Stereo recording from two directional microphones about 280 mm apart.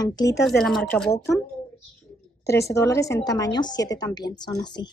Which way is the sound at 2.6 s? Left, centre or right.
Centre.